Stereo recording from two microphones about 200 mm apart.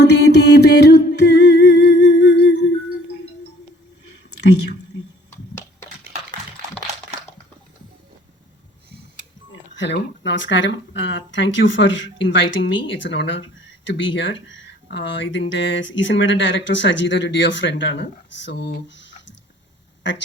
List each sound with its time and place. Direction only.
0.0 s music: 55° left (ahead or behind)
9.5 s speech: 65° left (ahead or behind)